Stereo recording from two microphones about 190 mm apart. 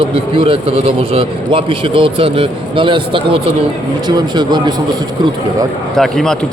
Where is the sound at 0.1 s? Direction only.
25° right (ahead or behind).